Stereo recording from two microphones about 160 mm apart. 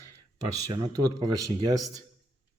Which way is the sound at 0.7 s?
25° right (ahead or behind).